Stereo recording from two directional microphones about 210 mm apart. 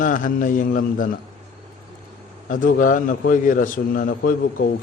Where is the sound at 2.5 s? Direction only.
40° left (ahead or behind).